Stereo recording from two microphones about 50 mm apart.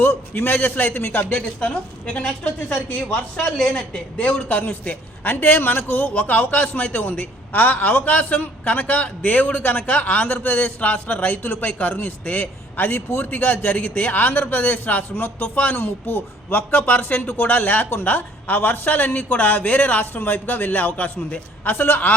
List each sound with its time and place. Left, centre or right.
0.0 s speech: left
1.3 s a woman's voice: left
3.3 s speech: centre
3.8 s a man's voice: left